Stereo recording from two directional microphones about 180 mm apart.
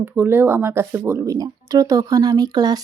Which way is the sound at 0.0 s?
10° right (ahead or behind).